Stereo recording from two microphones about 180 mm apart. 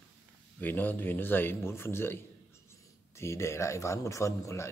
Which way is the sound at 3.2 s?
15° left (ahead or behind).